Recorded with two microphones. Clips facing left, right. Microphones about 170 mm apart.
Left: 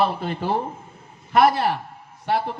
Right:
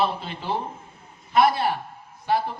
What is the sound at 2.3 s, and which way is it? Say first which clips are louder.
Speech: even; 70° left (ahead or behind).